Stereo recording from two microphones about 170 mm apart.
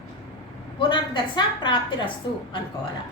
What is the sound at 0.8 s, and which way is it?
A woman's voice, 30° left (ahead or behind).